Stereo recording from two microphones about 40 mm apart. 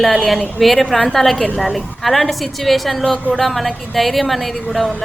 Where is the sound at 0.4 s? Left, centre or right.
Centre.